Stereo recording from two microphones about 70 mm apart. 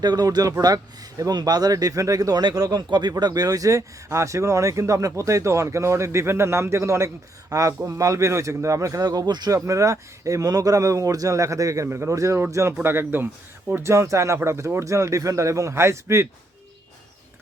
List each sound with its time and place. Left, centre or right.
0.0 s speech: right
1.3 s speech: right
2.6 s speech: right
7.5 s speech: right
9.5 s speech: right
11.9 s speech: right
13.8 s speech: right